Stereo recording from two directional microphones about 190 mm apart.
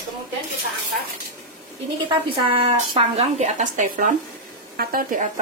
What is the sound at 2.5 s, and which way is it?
A woman's voice, 30° right (ahead or behind).